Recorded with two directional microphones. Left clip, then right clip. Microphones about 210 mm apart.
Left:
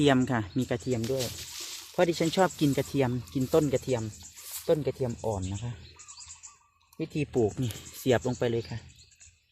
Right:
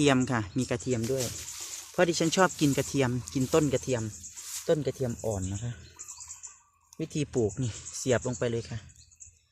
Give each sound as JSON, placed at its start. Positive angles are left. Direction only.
{"t": 0.0, "sound": "speech", "side_deg": 0}
{"t": 0.9, "sound": "speech", "side_deg": -20}
{"t": 7.0, "sound": "speech", "side_deg": -5}